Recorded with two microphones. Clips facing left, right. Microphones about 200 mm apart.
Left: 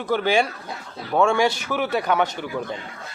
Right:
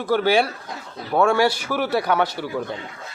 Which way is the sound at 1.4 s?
15° left (ahead or behind).